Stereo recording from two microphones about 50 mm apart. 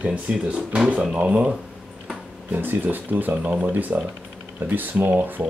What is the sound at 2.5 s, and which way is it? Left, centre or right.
Speech, right.